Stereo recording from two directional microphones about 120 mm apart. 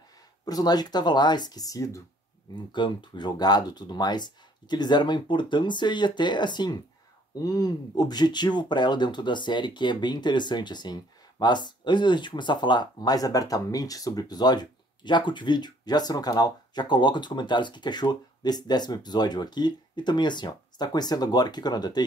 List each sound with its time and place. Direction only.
0.5 s speech: 35° left (ahead or behind)
2.5 s speech: 40° left (ahead or behind)